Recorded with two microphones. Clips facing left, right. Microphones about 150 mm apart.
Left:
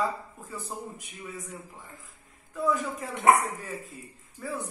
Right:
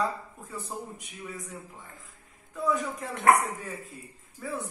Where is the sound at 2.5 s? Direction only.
Centre (ahead or behind).